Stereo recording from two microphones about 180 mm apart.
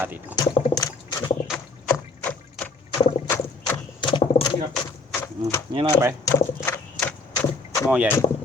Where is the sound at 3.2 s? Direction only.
10° left (ahead or behind).